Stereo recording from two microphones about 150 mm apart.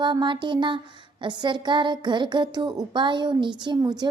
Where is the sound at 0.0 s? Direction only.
30° right (ahead or behind).